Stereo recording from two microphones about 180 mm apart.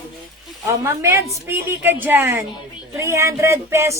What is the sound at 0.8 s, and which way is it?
A woman's voice, 15° right (ahead or behind).